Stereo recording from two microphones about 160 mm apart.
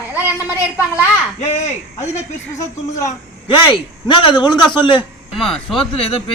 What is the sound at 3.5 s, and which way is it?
A man's voice, 30° left (ahead or behind).